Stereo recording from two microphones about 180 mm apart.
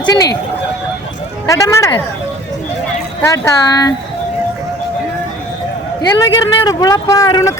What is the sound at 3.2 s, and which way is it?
Speech, 15° left (ahead or behind).